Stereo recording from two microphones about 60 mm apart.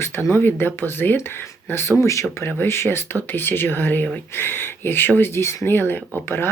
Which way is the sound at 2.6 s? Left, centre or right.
Left.